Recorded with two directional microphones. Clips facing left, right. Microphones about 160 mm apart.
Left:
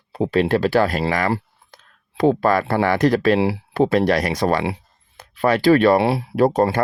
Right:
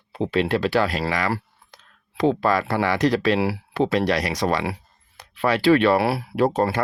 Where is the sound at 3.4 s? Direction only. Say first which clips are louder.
Left 3 dB; 25° left (ahead or behind).